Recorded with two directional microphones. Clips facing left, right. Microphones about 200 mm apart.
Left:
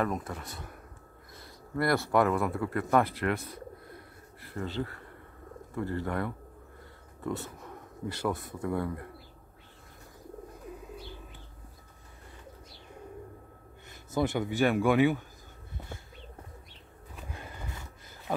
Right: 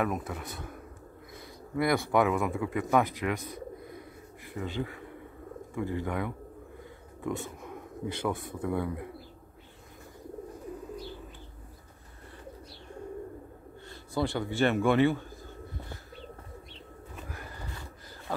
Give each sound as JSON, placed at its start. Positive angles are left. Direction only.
{"t": 0.0, "sound": "speech", "side_deg": -5}
{"t": 4.6, "sound": "speech", "side_deg": -10}
{"t": 7.3, "sound": "a man's voice", "side_deg": 0}
{"t": 14.1, "sound": "speech", "side_deg": 20}
{"t": 17.3, "sound": "a sound", "side_deg": 20}